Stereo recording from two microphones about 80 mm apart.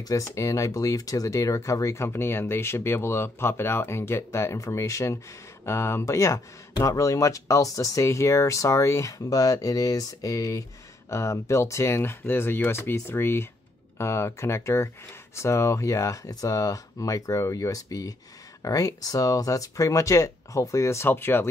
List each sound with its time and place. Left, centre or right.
0.1 s speech: left